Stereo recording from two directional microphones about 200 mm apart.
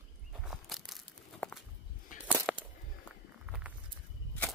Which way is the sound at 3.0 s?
5° right (ahead or behind).